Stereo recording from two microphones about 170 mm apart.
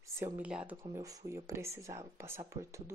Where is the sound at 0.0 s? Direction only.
10° right (ahead or behind).